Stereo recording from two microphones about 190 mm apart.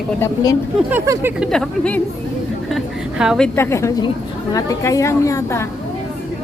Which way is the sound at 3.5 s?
15° left (ahead or behind).